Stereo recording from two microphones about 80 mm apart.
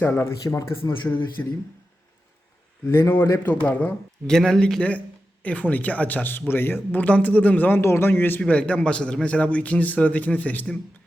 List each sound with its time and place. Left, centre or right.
0.0 s a man's voice: left
0.4 s speech: left
1.4 s a man's voice: left
2.8 s a man's voice: left
3.5 s a man's voice: centre
4.3 s a man's voice: centre; by 8.4 s left
8.4 s a man's voice: centre